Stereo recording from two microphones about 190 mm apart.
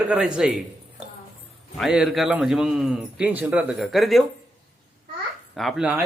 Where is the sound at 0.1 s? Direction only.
5° right (ahead or behind).